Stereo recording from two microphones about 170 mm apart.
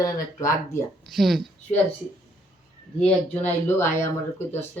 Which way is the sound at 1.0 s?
Centre (ahead or behind).